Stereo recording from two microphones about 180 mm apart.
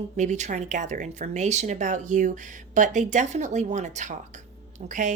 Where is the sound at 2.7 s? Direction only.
45° right (ahead or behind).